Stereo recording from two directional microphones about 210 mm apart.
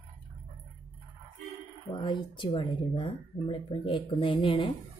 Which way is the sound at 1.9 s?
25° left (ahead or behind).